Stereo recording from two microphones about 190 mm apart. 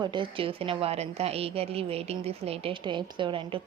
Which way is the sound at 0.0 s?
25° right (ahead or behind).